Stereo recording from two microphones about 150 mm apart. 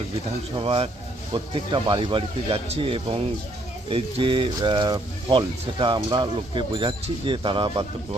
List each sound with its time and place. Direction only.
0.5 s speech: 40° right (ahead or behind)